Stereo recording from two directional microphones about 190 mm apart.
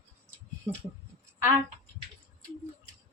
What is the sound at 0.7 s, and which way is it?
Speech, 15° right (ahead or behind).